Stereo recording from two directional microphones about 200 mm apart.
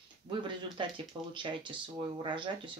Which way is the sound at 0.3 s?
25° right (ahead or behind).